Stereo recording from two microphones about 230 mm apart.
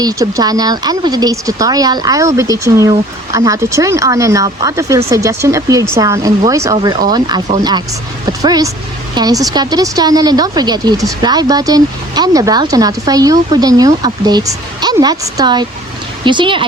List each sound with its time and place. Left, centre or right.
0.0 s speech: centre